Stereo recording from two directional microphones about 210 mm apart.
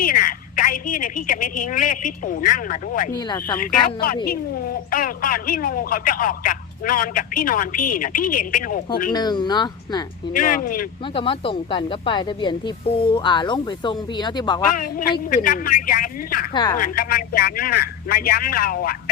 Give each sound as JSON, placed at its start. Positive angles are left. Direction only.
{"t": 0.0, "sound": "speech", "side_deg": 40}
{"t": 3.1, "sound": "speech", "side_deg": 20}
{"t": 3.6, "sound": "speech", "side_deg": 40}
{"t": 9.1, "sound": "speech", "side_deg": 20}
{"t": 10.3, "sound": "speech", "side_deg": 40}
{"t": 11.0, "sound": "speech", "side_deg": 25}
{"t": 14.7, "sound": "speech", "side_deg": 40}
{"t": 16.5, "sound": "speech", "side_deg": 20}
{"t": 16.7, "sound": "a man's voice", "side_deg": 40}